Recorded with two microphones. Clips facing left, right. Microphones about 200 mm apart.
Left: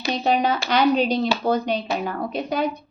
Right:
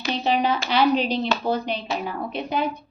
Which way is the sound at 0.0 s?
40° left (ahead or behind).